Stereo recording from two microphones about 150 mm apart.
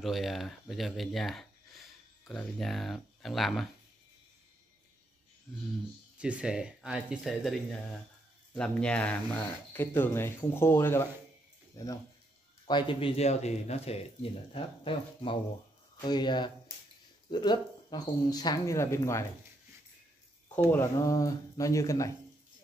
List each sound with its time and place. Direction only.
0.0 s speech: centre (ahead or behind)
6.1 s speech: 5° right (ahead or behind); by 19.2 s 20° left (ahead or behind)
20.5 s speech: 15° left (ahead or behind)